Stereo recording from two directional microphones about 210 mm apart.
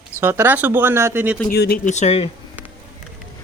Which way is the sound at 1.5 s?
50° left (ahead or behind).